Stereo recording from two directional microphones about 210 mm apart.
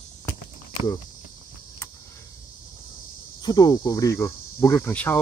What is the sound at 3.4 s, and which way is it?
Cricket, 20° left (ahead or behind).